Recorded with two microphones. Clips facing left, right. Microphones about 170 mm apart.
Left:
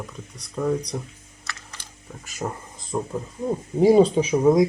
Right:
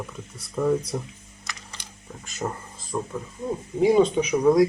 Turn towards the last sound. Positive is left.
turn(degrees=20)  # may be behind; listen again after turning